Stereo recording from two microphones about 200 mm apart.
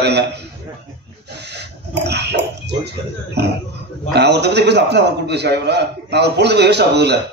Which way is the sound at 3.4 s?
55° right (ahead or behind).